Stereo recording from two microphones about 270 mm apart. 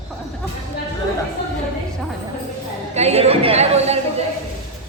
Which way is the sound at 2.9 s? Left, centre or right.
Right.